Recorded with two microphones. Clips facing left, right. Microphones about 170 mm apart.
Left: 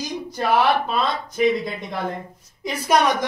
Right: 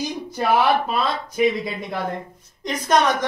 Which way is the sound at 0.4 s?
5° right (ahead or behind).